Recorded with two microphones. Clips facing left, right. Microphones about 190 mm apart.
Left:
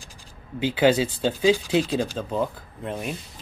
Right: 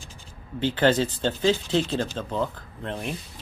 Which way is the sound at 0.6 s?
10° left (ahead or behind).